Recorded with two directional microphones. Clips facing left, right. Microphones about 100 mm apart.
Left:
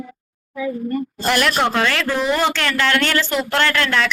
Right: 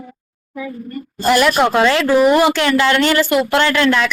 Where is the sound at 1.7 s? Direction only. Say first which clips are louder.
Right 7 dB; 20° right (ahead or behind).